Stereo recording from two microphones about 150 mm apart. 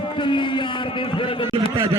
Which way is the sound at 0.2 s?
30° left (ahead or behind).